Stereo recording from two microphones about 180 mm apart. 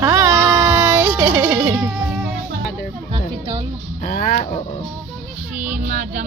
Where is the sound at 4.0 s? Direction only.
55° left (ahead or behind).